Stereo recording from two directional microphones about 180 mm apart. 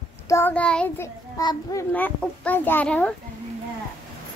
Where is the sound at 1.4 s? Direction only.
20° left (ahead or behind).